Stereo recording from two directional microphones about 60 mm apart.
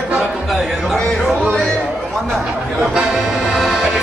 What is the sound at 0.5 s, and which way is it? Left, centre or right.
Speech, centre.